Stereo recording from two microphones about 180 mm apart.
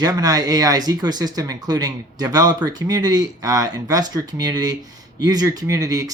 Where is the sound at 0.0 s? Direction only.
20° right (ahead or behind).